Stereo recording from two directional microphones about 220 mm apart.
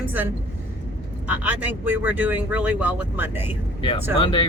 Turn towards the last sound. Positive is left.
turn(degrees=25)  # may be behind; listen again after turning